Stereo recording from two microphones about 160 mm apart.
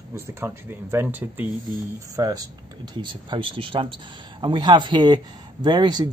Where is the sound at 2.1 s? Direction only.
25° right (ahead or behind).